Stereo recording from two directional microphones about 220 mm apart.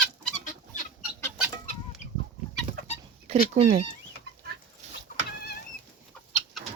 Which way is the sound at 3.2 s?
30° right (ahead or behind).